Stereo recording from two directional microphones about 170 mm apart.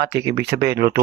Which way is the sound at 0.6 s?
65° right (ahead or behind).